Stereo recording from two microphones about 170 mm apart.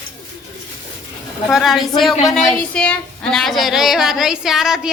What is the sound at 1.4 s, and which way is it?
A woman's voice, centre (ahead or behind).